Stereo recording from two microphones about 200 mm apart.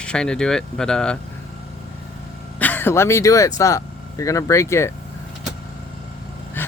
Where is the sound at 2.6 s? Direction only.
10° left (ahead or behind).